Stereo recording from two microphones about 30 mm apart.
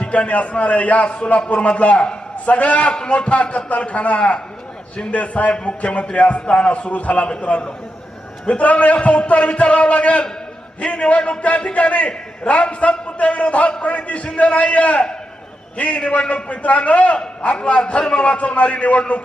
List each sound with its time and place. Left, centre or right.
0.0 s a man's voice: left
1.0 s a man's voice: left
8.6 s a man's voice: left